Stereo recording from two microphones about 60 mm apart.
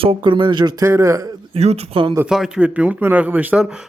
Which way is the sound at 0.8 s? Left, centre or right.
Right.